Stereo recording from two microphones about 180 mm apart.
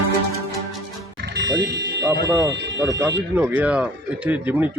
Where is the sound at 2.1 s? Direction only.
15° right (ahead or behind).